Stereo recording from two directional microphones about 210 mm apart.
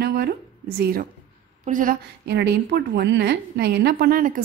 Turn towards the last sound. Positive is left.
turn(degrees=-40)  # may be behind; listen again after turning